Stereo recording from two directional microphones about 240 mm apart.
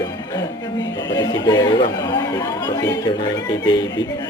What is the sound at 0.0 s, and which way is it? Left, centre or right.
Music, centre.